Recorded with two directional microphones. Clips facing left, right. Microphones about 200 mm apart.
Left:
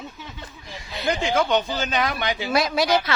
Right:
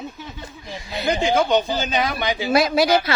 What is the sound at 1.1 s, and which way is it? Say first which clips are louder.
Speech: right 3 dB; 40° right (ahead or behind).